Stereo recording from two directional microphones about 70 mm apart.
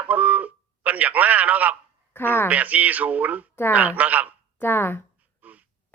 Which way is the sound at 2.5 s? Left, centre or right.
Right.